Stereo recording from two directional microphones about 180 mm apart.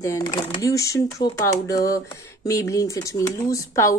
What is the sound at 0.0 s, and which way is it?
Speech, 15° left (ahead or behind).